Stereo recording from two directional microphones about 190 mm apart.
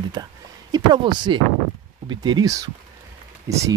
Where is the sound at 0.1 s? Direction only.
20° right (ahead or behind).